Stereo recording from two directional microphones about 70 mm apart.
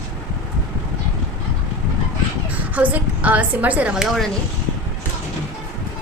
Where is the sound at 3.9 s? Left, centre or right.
Centre.